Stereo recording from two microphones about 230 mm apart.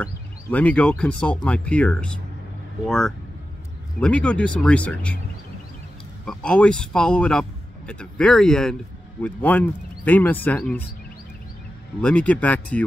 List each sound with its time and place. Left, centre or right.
0.0 s speech: centre
6.2 s speech: centre
12.0 s speech: centre